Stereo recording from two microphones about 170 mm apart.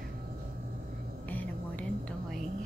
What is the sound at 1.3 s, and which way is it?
Music, 10° left (ahead or behind).